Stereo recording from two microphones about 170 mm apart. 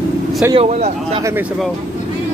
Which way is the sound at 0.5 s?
35° right (ahead or behind).